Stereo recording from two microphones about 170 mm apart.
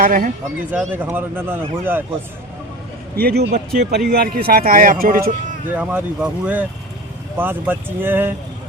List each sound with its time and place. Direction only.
0.0 s speech: 55° right (ahead or behind)
0.6 s speech: 10° right (ahead or behind)
3.2 s speech: 65° right (ahead or behind)
5.6 s speech: 10° right (ahead or behind)